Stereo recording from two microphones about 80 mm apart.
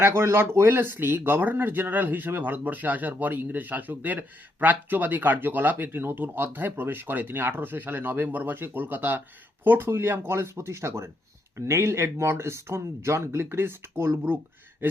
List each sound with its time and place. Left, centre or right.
0.0 s speech: right